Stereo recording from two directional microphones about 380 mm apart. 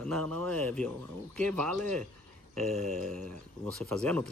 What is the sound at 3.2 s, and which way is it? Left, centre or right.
Speech, right.